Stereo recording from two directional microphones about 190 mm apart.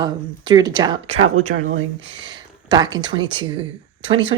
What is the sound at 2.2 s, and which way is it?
Speech, 20° right (ahead or behind).